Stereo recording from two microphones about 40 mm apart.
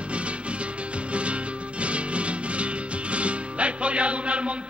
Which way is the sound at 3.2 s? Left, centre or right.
Right.